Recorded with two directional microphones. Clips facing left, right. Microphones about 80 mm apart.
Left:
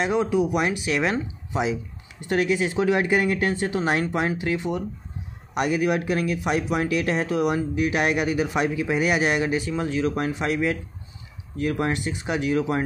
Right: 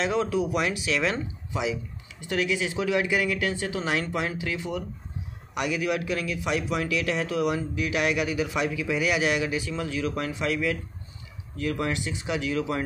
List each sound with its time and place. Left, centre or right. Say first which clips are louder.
0.0 s speech: left 3 dB; centre
0.8 s speech: left 2 dB; left
1.5 s speech: left 4 dB; left